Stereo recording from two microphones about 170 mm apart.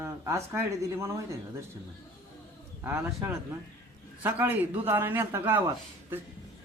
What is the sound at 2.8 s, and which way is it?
Speech, 15° right (ahead or behind).